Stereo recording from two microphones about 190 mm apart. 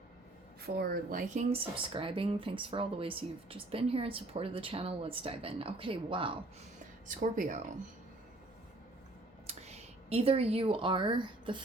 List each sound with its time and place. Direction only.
0.8 s speech: 50° right (ahead or behind); by 6.3 s 25° right (ahead or behind)
7.2 s speech: 40° right (ahead or behind)
9.5 s speech: 35° right (ahead or behind)